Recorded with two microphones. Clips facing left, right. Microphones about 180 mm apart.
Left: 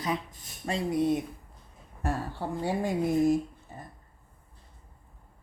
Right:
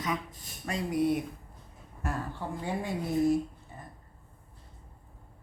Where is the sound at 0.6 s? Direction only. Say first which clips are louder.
Left 1 dB; 25° left (ahead or behind).